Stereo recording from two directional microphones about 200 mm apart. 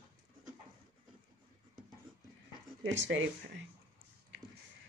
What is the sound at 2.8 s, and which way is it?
Speech, 65° right (ahead or behind).